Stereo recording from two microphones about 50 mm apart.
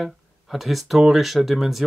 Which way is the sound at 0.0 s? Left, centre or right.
Centre.